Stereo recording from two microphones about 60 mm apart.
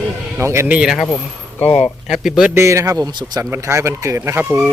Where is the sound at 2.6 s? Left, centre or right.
Right.